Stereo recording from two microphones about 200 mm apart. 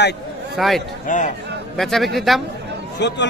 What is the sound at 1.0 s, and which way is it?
Speech, 40° left (ahead or behind).